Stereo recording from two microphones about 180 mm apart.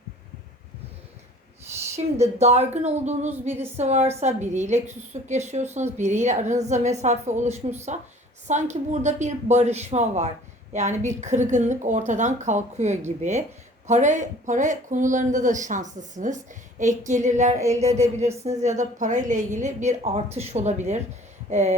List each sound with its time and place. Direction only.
2.2 s a woman's voice: 35° right (ahead or behind)